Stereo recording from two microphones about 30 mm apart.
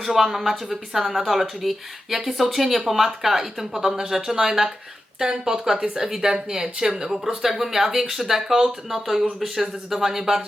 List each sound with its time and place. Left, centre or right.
0.0 s speech: centre
5.7 s speech: right
6.0 s speech: centre